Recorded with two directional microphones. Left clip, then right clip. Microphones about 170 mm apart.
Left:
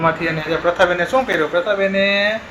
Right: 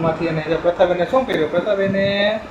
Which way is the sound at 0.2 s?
10° left (ahead or behind).